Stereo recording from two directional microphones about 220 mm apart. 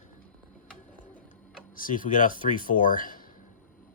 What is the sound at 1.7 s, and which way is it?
Speech, 40° left (ahead or behind).